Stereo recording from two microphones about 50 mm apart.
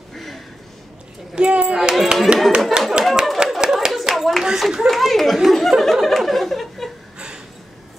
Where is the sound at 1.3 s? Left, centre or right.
Right.